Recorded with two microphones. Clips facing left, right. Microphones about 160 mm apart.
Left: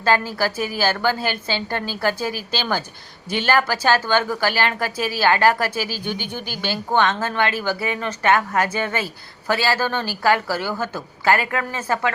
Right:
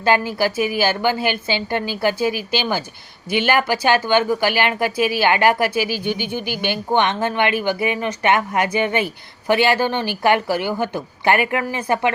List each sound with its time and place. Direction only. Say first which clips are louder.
0.0 s a woman's voice: right 2 dB; 15° right (ahead or behind)